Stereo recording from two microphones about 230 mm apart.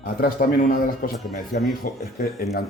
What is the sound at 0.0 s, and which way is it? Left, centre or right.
Speech, left.